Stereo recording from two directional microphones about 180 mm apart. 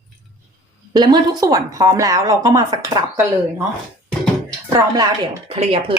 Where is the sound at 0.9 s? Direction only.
25° right (ahead or behind).